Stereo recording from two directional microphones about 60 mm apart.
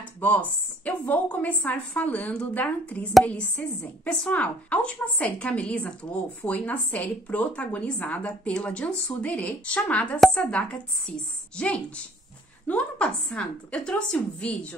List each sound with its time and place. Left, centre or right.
0.2 s a woman's voice: left